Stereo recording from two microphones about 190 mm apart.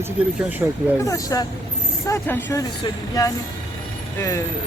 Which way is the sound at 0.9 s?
15° left (ahead or behind).